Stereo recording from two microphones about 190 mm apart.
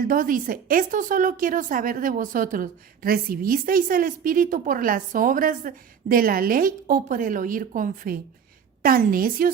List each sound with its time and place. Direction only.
0.1 s speech: 45° right (ahead or behind)